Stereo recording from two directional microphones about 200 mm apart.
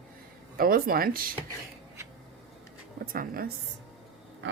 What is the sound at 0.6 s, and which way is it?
Speech, 45° right (ahead or behind).